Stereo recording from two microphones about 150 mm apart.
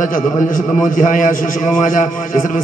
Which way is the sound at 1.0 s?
60° left (ahead or behind).